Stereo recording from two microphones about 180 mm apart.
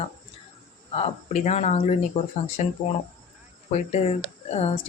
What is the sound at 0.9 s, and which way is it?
Speech, 35° left (ahead or behind).